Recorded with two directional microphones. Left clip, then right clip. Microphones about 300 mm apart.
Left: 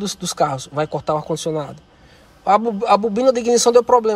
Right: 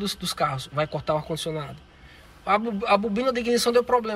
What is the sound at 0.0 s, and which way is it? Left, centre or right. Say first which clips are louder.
A man's voice: left 6 dB; centre.